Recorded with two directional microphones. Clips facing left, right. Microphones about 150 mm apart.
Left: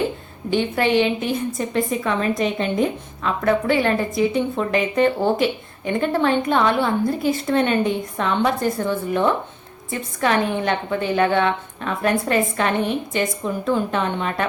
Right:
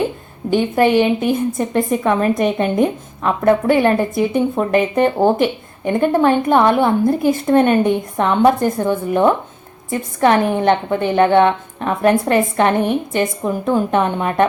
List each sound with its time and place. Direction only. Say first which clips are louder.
0.5 s a woman's voice: right 5 dB; 50° right (ahead or behind)